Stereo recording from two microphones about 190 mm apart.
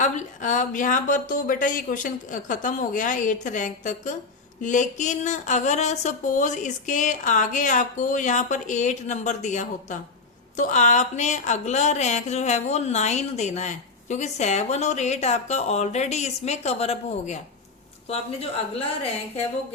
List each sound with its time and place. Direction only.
0.0 s a woman's voice: 40° left (ahead or behind)